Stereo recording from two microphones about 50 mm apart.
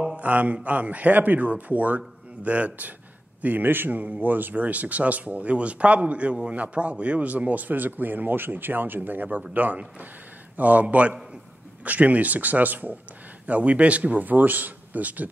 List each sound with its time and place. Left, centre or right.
0.2 s speech: right
3.4 s speech: right